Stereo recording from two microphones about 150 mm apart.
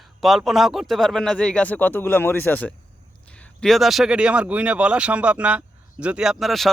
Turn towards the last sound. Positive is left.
turn(degrees=0)  # may be behind; listen again after turning